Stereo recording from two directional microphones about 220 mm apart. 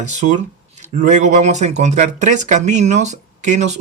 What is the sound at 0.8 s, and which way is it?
Speech, 35° right (ahead or behind).